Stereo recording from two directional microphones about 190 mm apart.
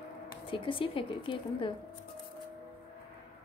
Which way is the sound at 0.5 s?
25° left (ahead or behind).